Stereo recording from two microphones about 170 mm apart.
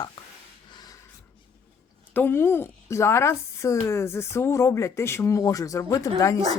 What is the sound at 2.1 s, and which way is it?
Speech, 10° left (ahead or behind).